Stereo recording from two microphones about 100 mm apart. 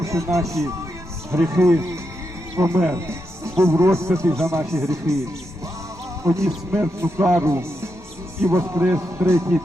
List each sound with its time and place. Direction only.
0.0 s a man's voice: 30° right (ahead or behind)
2.9 s music: 30° right (ahead or behind)
3.6 s a man's voice: 30° right (ahead or behind)
6.2 s a man's voice: 30° right (ahead or behind)